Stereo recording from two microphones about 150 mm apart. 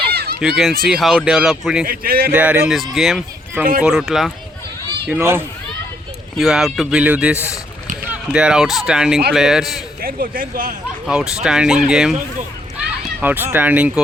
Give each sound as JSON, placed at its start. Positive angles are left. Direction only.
{"t": 0.1, "sound": "a sound", "side_deg": -90}
{"t": 0.4, "sound": "speech", "side_deg": 0}
{"t": 1.9, "sound": "a man's voice", "side_deg": -85}
{"t": 2.3, "sound": "speech", "side_deg": -10}
{"t": 5.0, "sound": "speech", "side_deg": -15}
{"t": 6.3, "sound": "speech", "side_deg": 0}
{"t": 10.0, "sound": "speech", "side_deg": -70}
{"t": 11.0, "sound": "speech", "side_deg": -5}
{"t": 13.2, "sound": "speech", "side_deg": -15}